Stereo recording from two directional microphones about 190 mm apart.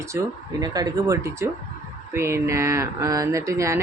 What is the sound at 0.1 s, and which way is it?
Speech, 15° right (ahead or behind).